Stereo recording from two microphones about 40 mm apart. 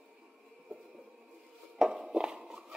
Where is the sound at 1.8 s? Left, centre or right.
Centre.